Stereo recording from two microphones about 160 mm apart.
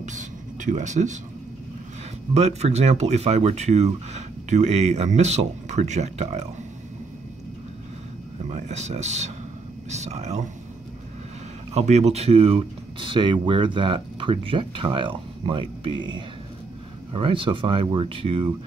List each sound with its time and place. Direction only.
0.0 s a sound: 50° right (ahead or behind)
2.3 s speech: 40° right (ahead or behind)
8.5 s speech: 45° right (ahead or behind)
11.7 s speech: 45° right (ahead or behind)